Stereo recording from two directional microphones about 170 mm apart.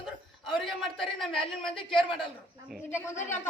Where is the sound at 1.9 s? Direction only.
30° left (ahead or behind).